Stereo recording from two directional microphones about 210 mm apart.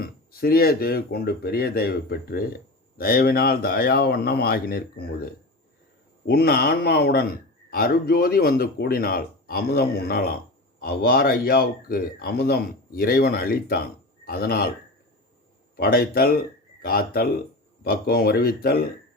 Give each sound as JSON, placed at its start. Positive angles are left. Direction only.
{"t": 0.0, "sound": "speech", "side_deg": 45}
{"t": 15.7, "sound": "speech", "side_deg": 45}